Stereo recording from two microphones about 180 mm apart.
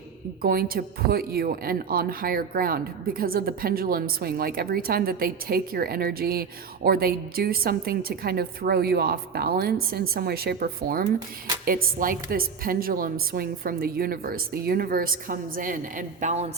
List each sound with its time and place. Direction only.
0.4 s a woman's voice: 55° right (ahead or behind); by 16.5 s 40° right (ahead or behind)